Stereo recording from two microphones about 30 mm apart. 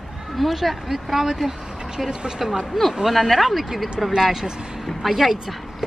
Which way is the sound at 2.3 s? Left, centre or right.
Centre.